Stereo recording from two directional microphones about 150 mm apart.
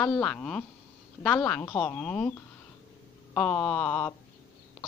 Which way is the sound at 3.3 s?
10° left (ahead or behind).